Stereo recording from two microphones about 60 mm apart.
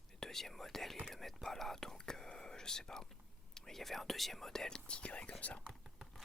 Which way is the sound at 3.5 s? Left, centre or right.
Centre.